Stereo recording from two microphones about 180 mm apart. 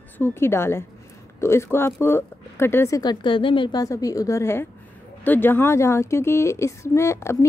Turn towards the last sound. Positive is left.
turn(degrees=15)  # may be behind; listen again after turning